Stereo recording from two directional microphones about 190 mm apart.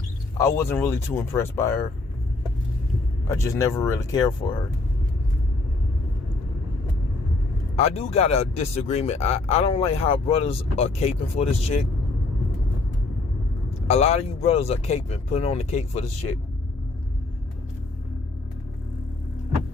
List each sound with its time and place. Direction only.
0.3 s speech: 15° left (ahead or behind)
3.2 s speech: 15° left (ahead or behind)
7.8 s speech: 35° left (ahead or behind)
13.8 s speech: 35° left (ahead or behind)